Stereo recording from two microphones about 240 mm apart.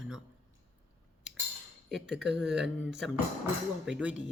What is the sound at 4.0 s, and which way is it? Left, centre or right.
Speech, centre.